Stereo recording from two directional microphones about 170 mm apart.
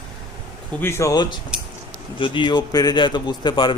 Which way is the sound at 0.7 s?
15° left (ahead or behind).